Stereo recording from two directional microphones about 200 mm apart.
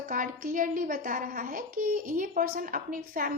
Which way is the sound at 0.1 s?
40° right (ahead or behind).